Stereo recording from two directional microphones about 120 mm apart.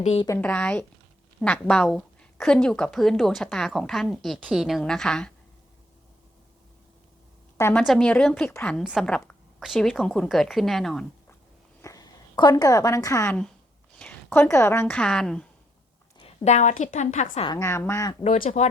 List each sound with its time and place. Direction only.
0.3 s speech: 15° left (ahead or behind)
7.6 s speech: 15° left (ahead or behind)
8.8 s speech: 5° right (ahead or behind)
11.8 s a woman's voice: 30° left (ahead or behind)
13.9 s a sound: 10° left (ahead or behind)
14.8 s speech: 10° left (ahead or behind)
16.2 s a woman's voice: 65° left (ahead or behind)
17.5 s speech: 25° left (ahead or behind)
18.2 s a woman's voice: 85° left